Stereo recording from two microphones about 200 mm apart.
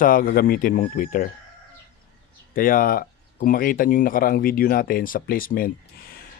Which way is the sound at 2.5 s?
45° left (ahead or behind).